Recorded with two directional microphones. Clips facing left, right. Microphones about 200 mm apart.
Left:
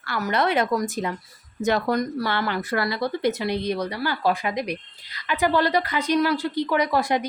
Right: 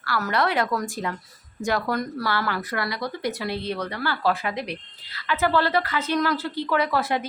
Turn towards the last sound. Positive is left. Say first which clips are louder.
# left 2 dB
turn(degrees=15)  # may be behind; listen again after turning